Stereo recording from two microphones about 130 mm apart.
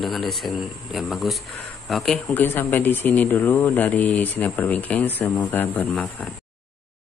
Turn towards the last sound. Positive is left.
turn(degrees=10)  # may be behind; listen again after turning